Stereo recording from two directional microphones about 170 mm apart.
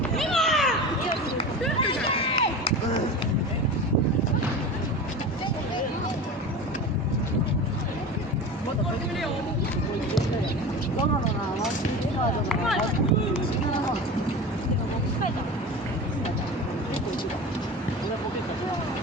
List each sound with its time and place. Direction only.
0.2 s cat: centre (ahead or behind)
1.8 s a sound: 30° left (ahead or behind)
12.5 s run: centre (ahead or behind)